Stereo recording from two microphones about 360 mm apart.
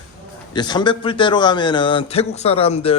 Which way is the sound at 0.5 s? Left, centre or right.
Centre.